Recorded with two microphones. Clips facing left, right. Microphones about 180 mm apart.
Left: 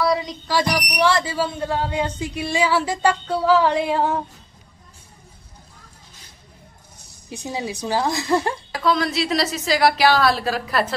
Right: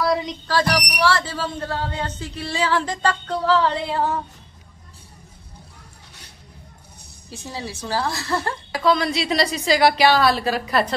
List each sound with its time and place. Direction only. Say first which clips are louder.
0.0 s a sound: left 1 dB; centre (ahead or behind)
0.5 s speech: even; 15° left (ahead or behind)
7.2 s speech: left 4 dB; 15° left (ahead or behind)
8.8 s a woman's voice: right 1 dB; centre (ahead or behind)